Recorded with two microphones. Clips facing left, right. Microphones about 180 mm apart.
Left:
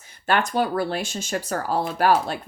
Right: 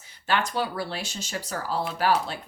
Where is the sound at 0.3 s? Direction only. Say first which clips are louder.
Left 5 dB; 50° left (ahead or behind).